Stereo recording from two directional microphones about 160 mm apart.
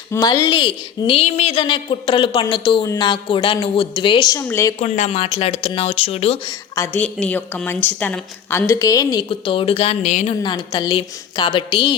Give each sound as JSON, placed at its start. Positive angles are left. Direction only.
{"t": 0.1, "sound": "a woman's voice", "side_deg": 25}
{"t": 4.8, "sound": "a woman's voice", "side_deg": 40}
{"t": 6.5, "sound": "a woman's voice", "side_deg": 20}
{"t": 10.4, "sound": "a woman's voice", "side_deg": 30}